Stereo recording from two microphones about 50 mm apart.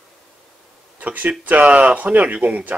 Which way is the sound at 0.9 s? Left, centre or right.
Right.